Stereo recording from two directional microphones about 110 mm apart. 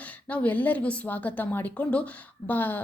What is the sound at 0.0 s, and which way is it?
A woman's voice, 15° left (ahead or behind).